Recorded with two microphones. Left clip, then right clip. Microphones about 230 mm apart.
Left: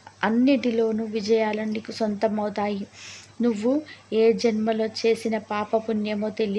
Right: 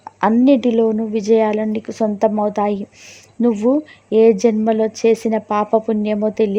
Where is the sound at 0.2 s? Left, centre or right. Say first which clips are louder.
Right 8 dB; right.